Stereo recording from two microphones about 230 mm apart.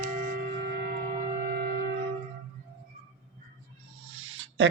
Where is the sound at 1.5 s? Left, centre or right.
Right.